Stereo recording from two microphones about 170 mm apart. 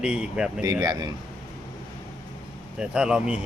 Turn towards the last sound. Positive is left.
turn(degrees=-5)  # may be behind; listen again after turning